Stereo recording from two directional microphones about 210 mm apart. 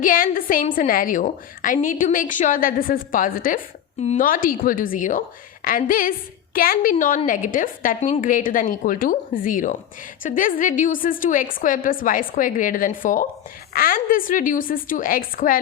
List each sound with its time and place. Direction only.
0.0 s a woman's voice: 40° left (ahead or behind)